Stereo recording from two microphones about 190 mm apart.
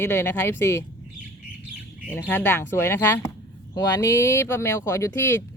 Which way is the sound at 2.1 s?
10° left (ahead or behind).